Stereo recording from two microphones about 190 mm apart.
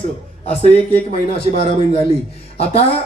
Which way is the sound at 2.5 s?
30° left (ahead or behind).